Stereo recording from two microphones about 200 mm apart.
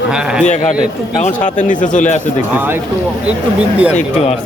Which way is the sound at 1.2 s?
40° left (ahead or behind).